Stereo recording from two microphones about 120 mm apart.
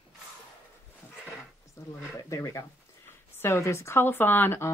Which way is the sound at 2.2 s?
25° left (ahead or behind).